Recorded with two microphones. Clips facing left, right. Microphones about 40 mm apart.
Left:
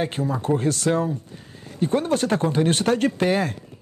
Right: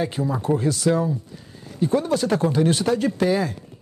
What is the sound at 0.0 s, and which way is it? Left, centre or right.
Speech, left.